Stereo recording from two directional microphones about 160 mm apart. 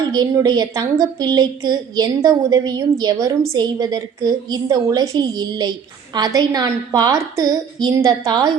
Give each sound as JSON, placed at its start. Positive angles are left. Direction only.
{"t": 0.1, "sound": "a woman's voice", "side_deg": -25}